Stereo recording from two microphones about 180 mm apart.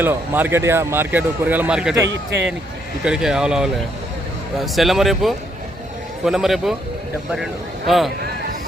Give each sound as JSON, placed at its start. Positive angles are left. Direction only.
{"t": 0.0, "sound": "speech", "side_deg": -10}
{"t": 2.0, "sound": "speech", "side_deg": -80}
{"t": 3.0, "sound": "speech", "side_deg": -5}
{"t": 7.9, "sound": "speech", "side_deg": 0}